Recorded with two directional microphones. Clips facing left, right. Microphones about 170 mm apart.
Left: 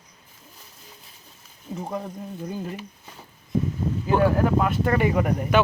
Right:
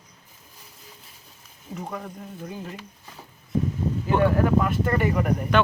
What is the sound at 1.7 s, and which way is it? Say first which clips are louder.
Speech: left 3 dB; 25° left (ahead or behind).